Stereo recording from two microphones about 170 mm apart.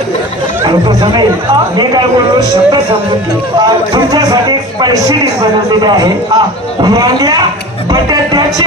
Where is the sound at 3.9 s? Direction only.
25° right (ahead or behind).